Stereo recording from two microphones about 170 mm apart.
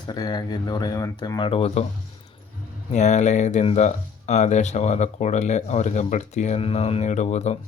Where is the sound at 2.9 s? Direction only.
45° left (ahead or behind).